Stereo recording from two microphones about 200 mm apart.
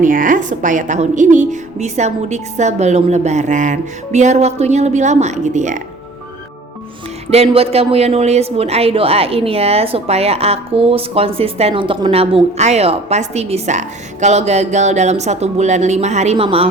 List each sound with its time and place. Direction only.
0.0 s speech: 45° right (ahead or behind)
7.3 s speech: 30° right (ahead or behind)